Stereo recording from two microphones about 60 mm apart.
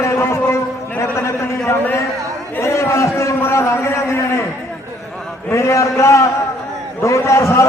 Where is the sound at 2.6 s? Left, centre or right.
Left.